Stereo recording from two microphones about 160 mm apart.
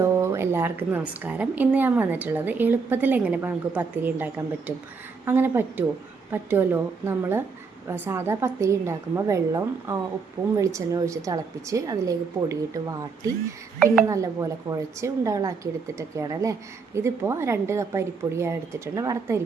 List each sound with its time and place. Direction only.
0.0 s a woman's voice: 15° right (ahead or behind)